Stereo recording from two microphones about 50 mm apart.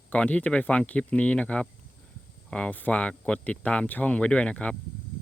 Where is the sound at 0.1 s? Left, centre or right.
Left.